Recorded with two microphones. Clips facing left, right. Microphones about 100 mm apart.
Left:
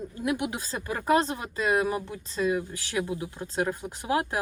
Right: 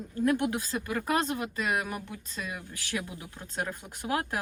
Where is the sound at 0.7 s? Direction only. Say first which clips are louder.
Left 5 dB; 25° left (ahead or behind).